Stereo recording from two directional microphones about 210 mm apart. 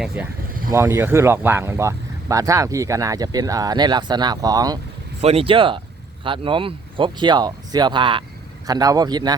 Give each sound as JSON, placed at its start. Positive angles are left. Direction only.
{"t": 0.0, "sound": "speech", "side_deg": -5}